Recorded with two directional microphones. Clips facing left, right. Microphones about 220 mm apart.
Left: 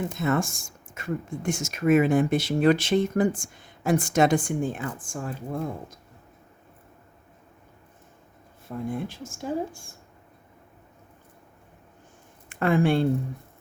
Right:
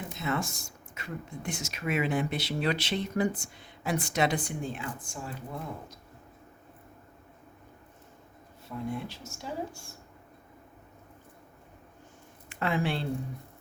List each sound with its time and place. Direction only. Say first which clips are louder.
0.1 s speech: left 7 dB; 50° left (ahead or behind)
8.6 s speech: left 4 dB; 50° left (ahead or behind)
12.5 s speech: left 8 dB; 50° left (ahead or behind)